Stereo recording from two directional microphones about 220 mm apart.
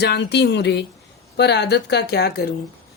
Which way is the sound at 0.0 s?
50° left (ahead or behind).